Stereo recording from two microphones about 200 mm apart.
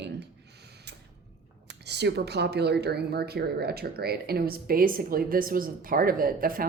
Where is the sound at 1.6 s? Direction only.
55° right (ahead or behind).